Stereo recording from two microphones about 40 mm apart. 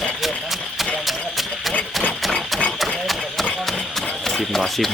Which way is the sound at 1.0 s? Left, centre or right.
Centre.